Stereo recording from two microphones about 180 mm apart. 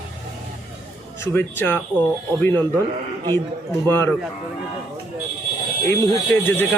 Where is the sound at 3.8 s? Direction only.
15° left (ahead or behind).